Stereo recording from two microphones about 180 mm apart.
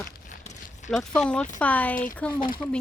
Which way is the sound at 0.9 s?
5° left (ahead or behind).